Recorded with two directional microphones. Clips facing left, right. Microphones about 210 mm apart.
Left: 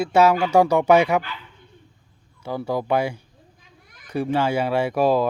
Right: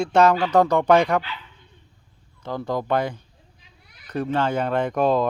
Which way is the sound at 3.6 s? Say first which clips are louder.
Left 4 dB; 50° left (ahead or behind).